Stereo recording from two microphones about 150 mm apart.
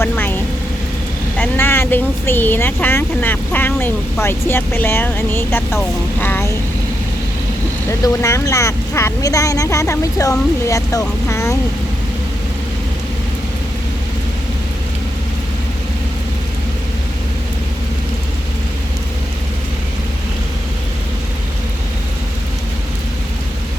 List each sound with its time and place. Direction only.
0.0 s vehicle: 15° left (ahead or behind)
1.4 s speech: 15° left (ahead or behind)
7.9 s speech: 20° left (ahead or behind)
11.3 s vehicle: 20° left (ahead or behind)